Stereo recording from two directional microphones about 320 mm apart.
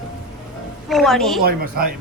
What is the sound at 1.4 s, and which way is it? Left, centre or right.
Speech, right.